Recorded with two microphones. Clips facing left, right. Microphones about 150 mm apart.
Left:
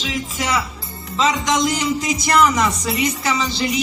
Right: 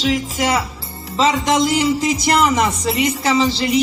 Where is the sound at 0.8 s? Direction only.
30° right (ahead or behind).